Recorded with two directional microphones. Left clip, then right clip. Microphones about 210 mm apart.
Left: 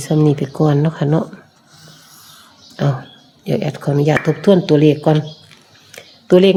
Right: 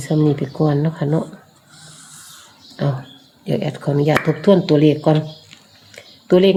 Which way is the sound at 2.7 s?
20° left (ahead or behind).